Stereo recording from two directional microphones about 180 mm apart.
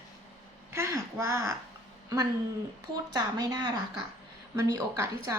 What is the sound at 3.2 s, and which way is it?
Speech, 20° right (ahead or behind).